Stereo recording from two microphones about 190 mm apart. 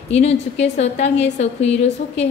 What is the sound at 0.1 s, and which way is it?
A woman's voice, 35° left (ahead or behind).